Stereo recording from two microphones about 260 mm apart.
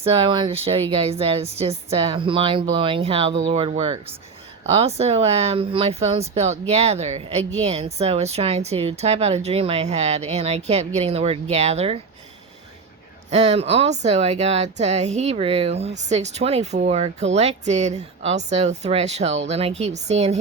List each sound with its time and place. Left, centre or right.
0.0 s speech: right
13.3 s speech: right